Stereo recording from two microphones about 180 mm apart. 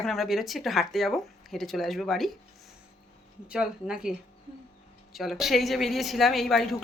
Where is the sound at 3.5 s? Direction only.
5° right (ahead or behind).